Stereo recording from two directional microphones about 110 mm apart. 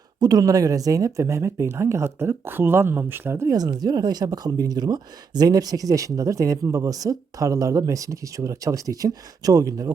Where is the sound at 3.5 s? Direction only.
35° right (ahead or behind).